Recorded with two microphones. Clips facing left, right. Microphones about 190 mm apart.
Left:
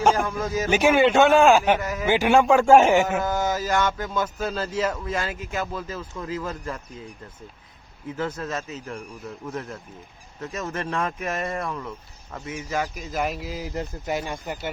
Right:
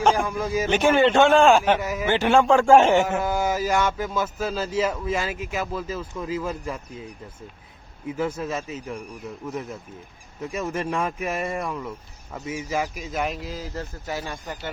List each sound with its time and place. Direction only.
0.0 s a sound: 5° left (ahead or behind)
0.3 s speech: 10° right (ahead or behind)
0.7 s a man's voice: 10° left (ahead or behind)
1.8 s speech: 10° right (ahead or behind)
2.0 s a man's voice: 10° left (ahead or behind)
3.2 s speech: 10° right (ahead or behind)
8.1 s speech: 10° right (ahead or behind); by 14.7 s 15° left (ahead or behind)